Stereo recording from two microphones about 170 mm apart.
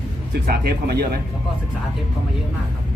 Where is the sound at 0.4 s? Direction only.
70° right (ahead or behind).